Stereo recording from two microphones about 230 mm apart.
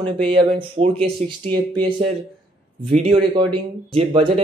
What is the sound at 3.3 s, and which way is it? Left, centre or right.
Speech, centre.